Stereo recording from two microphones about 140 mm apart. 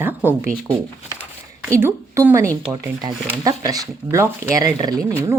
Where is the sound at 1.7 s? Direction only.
20° right (ahead or behind).